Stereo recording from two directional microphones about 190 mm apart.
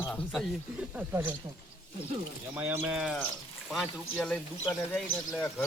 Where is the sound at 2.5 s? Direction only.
10° right (ahead or behind).